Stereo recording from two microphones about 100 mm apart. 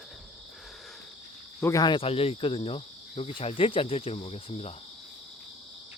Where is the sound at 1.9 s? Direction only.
75° left (ahead or behind).